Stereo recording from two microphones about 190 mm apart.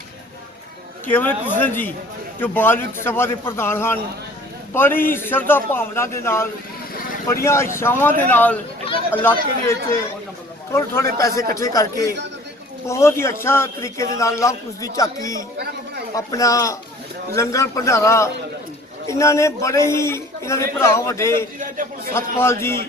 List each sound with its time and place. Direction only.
1.0 s a man's voice: 10° left (ahead or behind)
21.6 s a man's voice: 45° right (ahead or behind)
22.1 s a man's voice: 15° left (ahead or behind)